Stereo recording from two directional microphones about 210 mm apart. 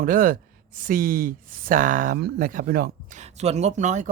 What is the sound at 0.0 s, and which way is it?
Speech, 40° right (ahead or behind).